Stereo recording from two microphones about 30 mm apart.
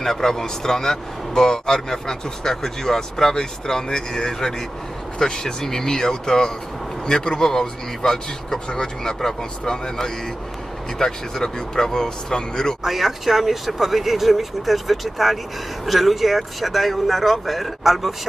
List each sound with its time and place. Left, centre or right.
0.0 s a man's voice: centre
12.8 s speech: centre